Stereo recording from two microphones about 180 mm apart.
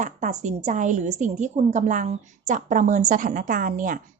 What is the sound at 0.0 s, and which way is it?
A woman's voice, 40° right (ahead or behind).